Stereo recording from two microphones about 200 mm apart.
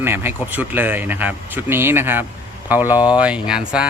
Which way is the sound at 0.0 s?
10° right (ahead or behind).